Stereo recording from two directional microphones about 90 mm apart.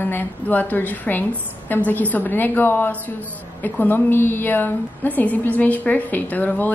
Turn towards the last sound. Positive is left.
turn(degrees=20)  # may be behind; listen again after turning